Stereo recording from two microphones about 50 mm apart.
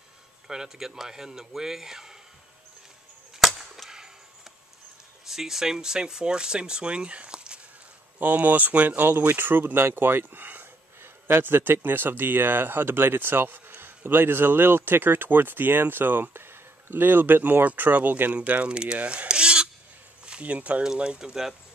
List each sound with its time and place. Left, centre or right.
0.5 s speech: centre
3.4 s chop: centre
5.3 s speech: centre
8.2 s speech: right
18.4 s speech: right
20.8 s speech: centre